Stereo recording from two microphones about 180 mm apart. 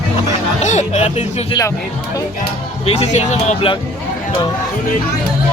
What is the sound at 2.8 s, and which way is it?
Speech, 40° left (ahead or behind).